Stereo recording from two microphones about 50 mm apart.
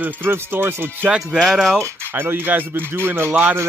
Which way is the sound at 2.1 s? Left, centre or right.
Right.